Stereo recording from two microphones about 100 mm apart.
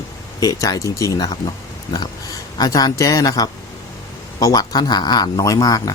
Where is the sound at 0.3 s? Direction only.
35° left (ahead or behind).